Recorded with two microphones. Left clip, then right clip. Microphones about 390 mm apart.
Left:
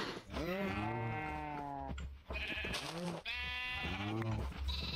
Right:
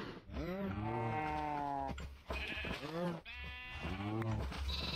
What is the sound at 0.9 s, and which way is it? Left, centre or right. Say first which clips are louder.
Livestock: right 3 dB; centre.